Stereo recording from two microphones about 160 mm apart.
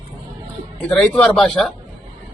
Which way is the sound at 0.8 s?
5° left (ahead or behind).